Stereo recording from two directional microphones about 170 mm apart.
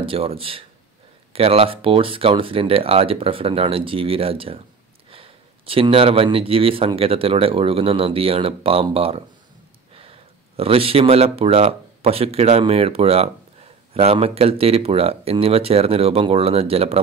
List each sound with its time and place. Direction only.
0.0 s speech: 35° right (ahead or behind)